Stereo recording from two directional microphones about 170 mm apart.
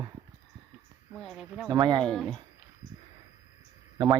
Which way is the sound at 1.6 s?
25° right (ahead or behind).